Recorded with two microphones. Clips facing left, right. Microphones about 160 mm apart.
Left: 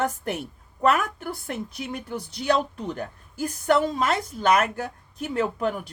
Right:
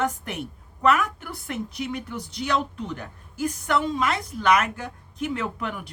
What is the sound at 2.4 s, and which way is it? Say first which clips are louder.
Speech: left 3 dB; 35° left (ahead or behind).